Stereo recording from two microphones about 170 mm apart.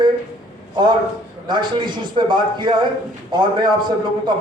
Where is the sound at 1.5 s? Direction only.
25° right (ahead or behind).